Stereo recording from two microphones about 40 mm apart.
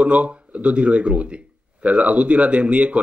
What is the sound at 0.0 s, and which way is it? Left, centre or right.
Speech, right.